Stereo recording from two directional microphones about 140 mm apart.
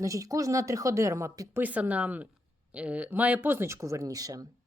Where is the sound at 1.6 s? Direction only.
10° right (ahead or behind).